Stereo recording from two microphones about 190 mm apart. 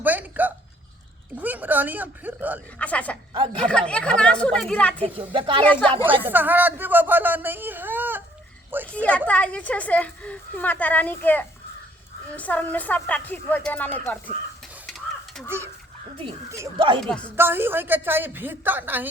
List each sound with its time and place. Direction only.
0.0 s a sound: 10° right (ahead or behind)
1.4 s speech: 10° right (ahead or behind)
2.7 s a woman's voice: 5° left (ahead or behind)
3.3 s speech: 25° right (ahead or behind)
3.6 s speech: 5° left (ahead or behind)
5.0 s speech: 30° right (ahead or behind)
5.6 s a woman's voice: 5° left (ahead or behind)
6.2 s speech: 10° right (ahead or behind)
8.8 s a woman's voice: 5° left (ahead or behind)
14.8 s stir: centre (ahead or behind)
15.4 s speech: 15° right (ahead or behind)
16.7 s speech: 25° right (ahead or behind)
17.0 s speech: 5° left (ahead or behind)
17.3 s speech: 10° right (ahead or behind)